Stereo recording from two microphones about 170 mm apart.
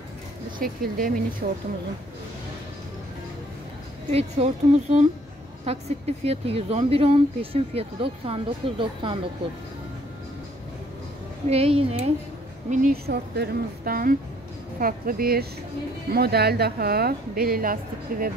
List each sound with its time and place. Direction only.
0.6 s a woman's voice: 55° right (ahead or behind)
4.1 s speech: 35° right (ahead or behind)
11.4 s speech: 35° right (ahead or behind)
12.7 s a woman's voice: 60° right (ahead or behind)